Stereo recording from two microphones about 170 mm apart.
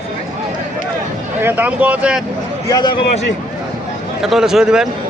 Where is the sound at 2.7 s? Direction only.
25° left (ahead or behind).